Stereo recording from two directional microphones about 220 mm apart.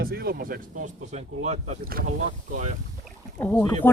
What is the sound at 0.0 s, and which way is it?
Speech, 45° right (ahead or behind).